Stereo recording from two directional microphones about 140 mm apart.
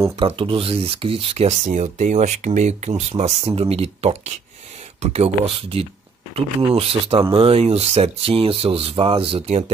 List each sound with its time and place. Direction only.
0.2 s speech: 40° right (ahead or behind); by 2.9 s 60° right (ahead or behind)
3.1 s speech: 45° right (ahead or behind)